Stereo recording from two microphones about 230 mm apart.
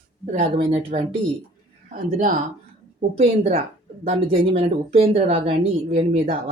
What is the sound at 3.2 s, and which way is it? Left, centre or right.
Speech, right.